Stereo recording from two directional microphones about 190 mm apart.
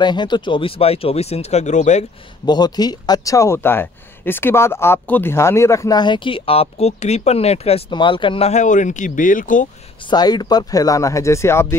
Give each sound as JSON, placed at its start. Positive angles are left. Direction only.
{"t": 0.0, "sound": "speech", "side_deg": 25}
{"t": 2.4, "sound": "speech", "side_deg": 20}
{"t": 10.0, "sound": "speech", "side_deg": 20}